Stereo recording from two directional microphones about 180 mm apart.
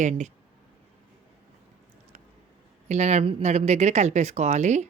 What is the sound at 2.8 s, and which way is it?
Speech, 40° right (ahead or behind).